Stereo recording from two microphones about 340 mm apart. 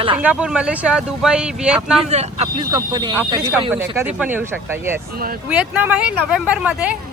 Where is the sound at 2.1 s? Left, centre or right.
Centre.